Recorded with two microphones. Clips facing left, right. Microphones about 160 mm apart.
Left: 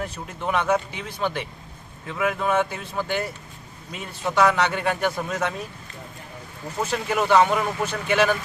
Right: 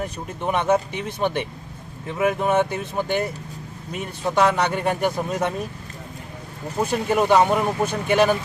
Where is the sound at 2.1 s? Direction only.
35° right (ahead or behind).